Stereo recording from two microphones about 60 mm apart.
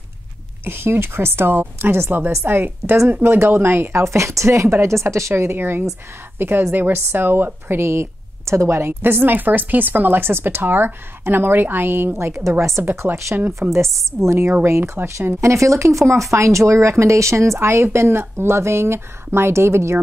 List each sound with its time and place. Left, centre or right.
0.7 s a woman's voice: right
12.1 s speech: right
14.6 s a woman's voice: right
15.4 s speech: right